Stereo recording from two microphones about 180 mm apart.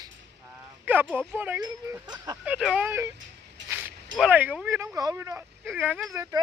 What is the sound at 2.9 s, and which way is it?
Speech, 15° right (ahead or behind).